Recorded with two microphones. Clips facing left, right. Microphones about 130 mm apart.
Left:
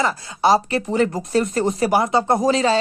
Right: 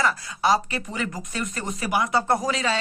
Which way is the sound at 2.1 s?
25° left (ahead or behind).